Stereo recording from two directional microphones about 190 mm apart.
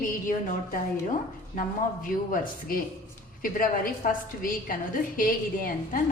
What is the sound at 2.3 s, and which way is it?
A man's voice, 50° left (ahead or behind).